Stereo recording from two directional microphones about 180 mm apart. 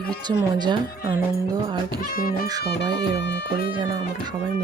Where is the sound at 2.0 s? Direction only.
50° left (ahead or behind).